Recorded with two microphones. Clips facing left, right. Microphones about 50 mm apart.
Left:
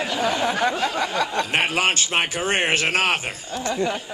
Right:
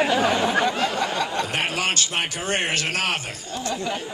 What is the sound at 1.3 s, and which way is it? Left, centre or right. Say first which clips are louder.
A man's voice: left 3 dB; left.